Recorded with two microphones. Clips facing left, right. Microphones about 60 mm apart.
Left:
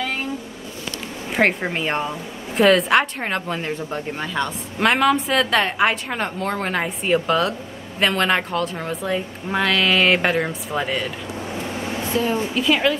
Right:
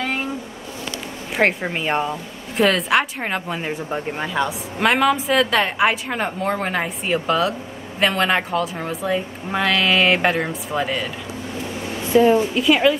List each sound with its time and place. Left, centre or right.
1.3 s speech: centre
12.1 s speech: centre
12.5 s speech: centre